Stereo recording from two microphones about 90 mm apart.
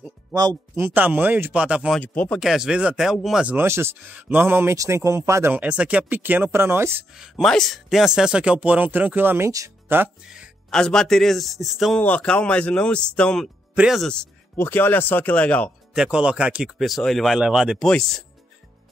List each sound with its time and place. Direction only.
0.7 s speech: 20° right (ahead or behind)
2.0 s speech: 15° left (ahead or behind)
2.4 s a man's voice: 5° right (ahead or behind)
3.4 s speech: 25° right (ahead or behind)
5.5 s speech: 15° right (ahead or behind)
7.4 s speech: 5° left (ahead or behind); by 10.0 s 25° right (ahead or behind)
10.7 s a man's voice: 5° left (ahead or behind)
12.0 s speech: 15° left (ahead or behind)
14.6 s speech: 20° left (ahead or behind)
15.9 s speech: 10° right (ahead or behind)
16.7 s a man's voice: centre (ahead or behind)
17.8 s speech: 10° left (ahead or behind)